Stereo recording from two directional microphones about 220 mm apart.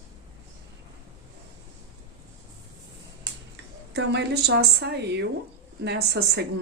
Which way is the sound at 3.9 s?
50° right (ahead or behind).